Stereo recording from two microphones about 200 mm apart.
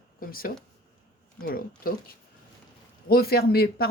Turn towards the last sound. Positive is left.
turn(degrees=50)  # may be behind; listen again after turning